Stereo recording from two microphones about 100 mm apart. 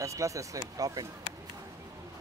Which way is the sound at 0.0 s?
30° right (ahead or behind).